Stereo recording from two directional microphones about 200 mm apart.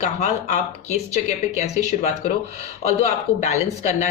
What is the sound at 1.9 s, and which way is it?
Speech, 35° left (ahead or behind).